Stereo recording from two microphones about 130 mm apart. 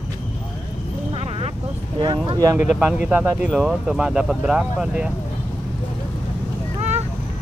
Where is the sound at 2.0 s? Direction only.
35° right (ahead or behind).